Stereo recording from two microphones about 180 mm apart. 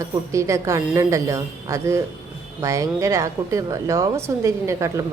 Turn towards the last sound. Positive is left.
turn(degrees=-15)  # may be behind; listen again after turning